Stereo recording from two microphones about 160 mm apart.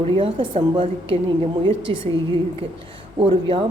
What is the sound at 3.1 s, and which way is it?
Speech, 35° right (ahead or behind).